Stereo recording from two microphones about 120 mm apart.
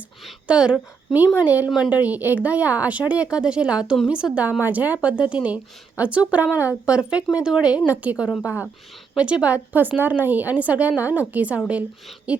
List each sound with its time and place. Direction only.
0.3 s speech: 5° right (ahead or behind)